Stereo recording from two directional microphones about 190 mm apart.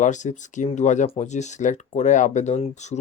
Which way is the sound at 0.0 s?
40° left (ahead or behind).